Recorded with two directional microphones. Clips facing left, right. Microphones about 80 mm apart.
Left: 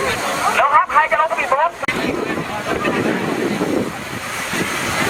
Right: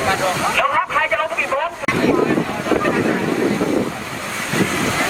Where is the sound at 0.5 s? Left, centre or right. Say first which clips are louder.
Left 4 dB; left.